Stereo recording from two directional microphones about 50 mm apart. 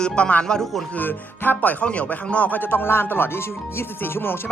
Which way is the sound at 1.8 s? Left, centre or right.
Left.